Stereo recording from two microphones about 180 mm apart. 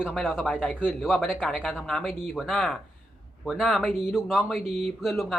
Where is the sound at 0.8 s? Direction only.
5° right (ahead or behind).